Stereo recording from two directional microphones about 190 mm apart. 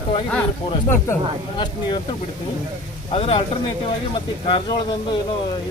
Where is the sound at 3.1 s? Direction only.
30° left (ahead or behind).